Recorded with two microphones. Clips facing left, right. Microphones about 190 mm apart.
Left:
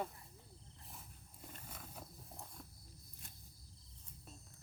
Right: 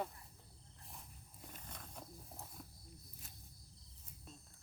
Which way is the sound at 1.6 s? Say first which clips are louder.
Even; 5° left (ahead or behind).